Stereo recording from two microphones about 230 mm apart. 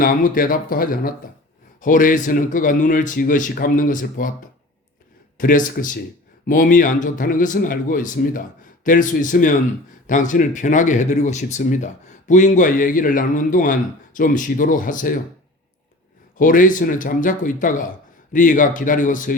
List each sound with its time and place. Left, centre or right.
0.0 s speech: left
5.4 s speech: left
16.4 s speech: left